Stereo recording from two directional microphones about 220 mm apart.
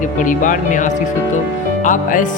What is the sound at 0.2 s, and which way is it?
Speech, 35° left (ahead or behind).